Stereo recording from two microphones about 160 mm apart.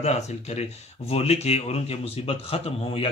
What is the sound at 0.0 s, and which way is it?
Speech, 45° left (ahead or behind).